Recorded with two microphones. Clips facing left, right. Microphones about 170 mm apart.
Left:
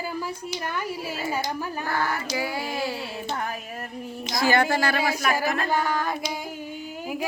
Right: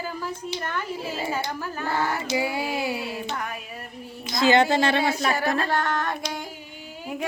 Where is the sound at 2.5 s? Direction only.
15° right (ahead or behind).